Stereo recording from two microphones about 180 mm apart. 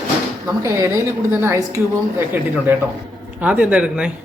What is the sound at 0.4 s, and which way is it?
A woman's voice, 15° right (ahead or behind).